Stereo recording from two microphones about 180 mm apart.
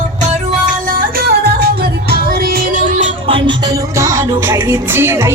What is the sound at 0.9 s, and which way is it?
Music, 55° right (ahead or behind).